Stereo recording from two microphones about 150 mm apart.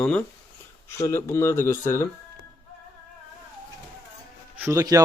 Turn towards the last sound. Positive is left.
turn(degrees=-25)  # may be behind; listen again after turning